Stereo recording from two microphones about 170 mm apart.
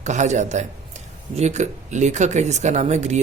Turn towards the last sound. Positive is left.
turn(degrees=-40)  # may be behind; listen again after turning